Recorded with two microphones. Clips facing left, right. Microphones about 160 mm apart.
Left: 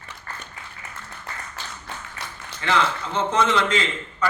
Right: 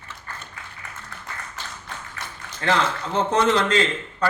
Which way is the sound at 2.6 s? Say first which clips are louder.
Right 1 dB; 35° right (ahead or behind).